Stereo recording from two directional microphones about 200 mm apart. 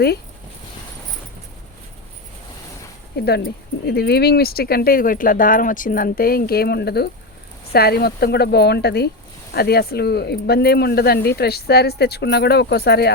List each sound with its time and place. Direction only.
3.2 s speech: 55° left (ahead or behind)